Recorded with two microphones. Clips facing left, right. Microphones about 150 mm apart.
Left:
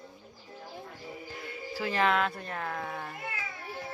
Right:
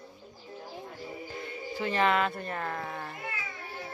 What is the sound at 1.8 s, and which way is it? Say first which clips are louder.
Speech: right 1 dB; centre (ahead or behind).